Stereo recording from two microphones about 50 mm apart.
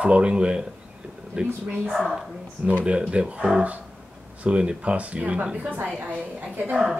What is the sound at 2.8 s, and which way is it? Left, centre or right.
Speech, right.